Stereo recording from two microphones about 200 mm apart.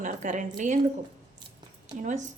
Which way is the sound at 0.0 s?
40° right (ahead or behind).